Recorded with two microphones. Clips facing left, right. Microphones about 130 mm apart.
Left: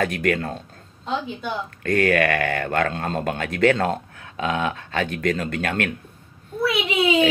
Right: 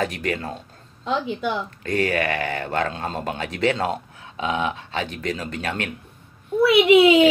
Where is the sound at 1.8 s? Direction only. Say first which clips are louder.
Left 6 dB; 55° left (ahead or behind).